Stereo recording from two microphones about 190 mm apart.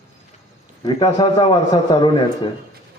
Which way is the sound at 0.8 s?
25° left (ahead or behind).